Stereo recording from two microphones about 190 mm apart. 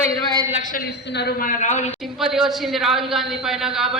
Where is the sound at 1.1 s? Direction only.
55° left (ahead or behind); by 1.9 s 40° left (ahead or behind).